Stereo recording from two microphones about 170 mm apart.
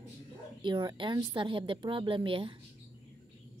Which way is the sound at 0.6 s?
25° right (ahead or behind).